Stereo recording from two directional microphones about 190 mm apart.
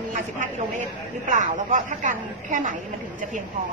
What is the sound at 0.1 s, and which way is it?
A woman's voice, 40° right (ahead or behind).